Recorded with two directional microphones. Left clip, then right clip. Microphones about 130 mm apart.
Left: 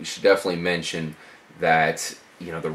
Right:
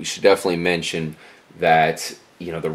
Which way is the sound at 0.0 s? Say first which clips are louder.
Right 3 dB; 20° right (ahead or behind).